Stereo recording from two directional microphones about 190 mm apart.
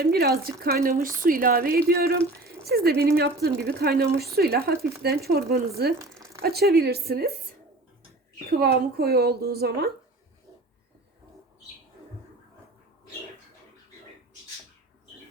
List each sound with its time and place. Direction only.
0.0 s speech: 55° right (ahead or behind)
8.4 s speech: 55° right (ahead or behind)